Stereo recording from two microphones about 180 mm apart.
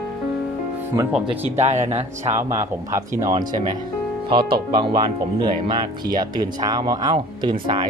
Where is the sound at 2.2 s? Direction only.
15° right (ahead or behind).